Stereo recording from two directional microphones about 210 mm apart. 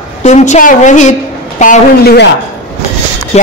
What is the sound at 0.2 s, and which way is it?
A woman's voice, 35° left (ahead or behind).